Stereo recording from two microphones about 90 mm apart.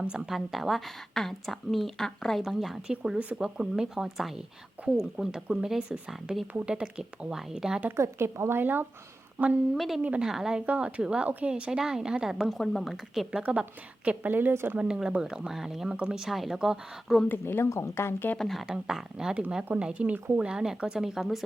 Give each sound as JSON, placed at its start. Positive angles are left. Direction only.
{"t": 0.0, "sound": "a woman's voice", "side_deg": -10}
{"t": 7.9, "sound": "speech", "side_deg": -30}
{"t": 9.7, "sound": "a woman's voice", "side_deg": 0}
{"t": 10.0, "sound": "speech", "side_deg": -15}
{"t": 10.2, "sound": "a woman's voice", "side_deg": -5}
{"t": 12.5, "sound": "a woman's voice", "side_deg": 5}
{"t": 13.4, "sound": "speech", "side_deg": -15}
{"t": 14.8, "sound": "speech", "side_deg": -10}
{"t": 17.2, "sound": "speech", "side_deg": 25}
{"t": 18.3, "sound": "a woman's voice", "side_deg": 0}